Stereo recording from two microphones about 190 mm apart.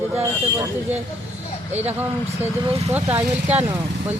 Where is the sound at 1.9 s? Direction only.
10° right (ahead or behind).